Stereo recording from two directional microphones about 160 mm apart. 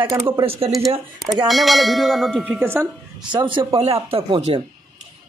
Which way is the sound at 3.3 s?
30° right (ahead or behind).